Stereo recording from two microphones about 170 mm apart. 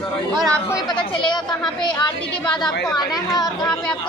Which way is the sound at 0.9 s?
30° left (ahead or behind).